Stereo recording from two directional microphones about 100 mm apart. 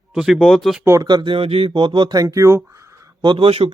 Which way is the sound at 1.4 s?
75° right (ahead or behind).